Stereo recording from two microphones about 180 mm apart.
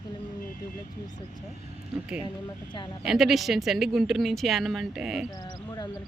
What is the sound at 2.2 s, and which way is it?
Speech, 25° left (ahead or behind).